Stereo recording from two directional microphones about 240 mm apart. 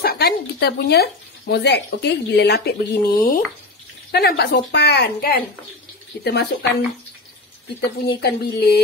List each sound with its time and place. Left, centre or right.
0.0 s speech: left
8.2 s speech: left